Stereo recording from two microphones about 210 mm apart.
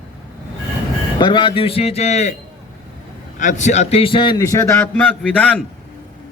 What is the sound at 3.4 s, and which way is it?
A man's voice, 35° left (ahead or behind).